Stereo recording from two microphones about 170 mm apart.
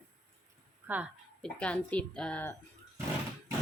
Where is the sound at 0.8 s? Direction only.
10° right (ahead or behind).